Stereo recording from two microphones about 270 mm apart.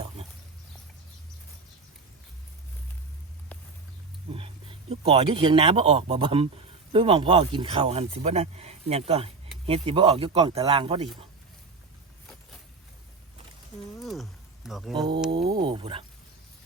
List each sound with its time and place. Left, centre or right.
4.3 s speech: right
14.0 s speech: centre
14.9 s speech: centre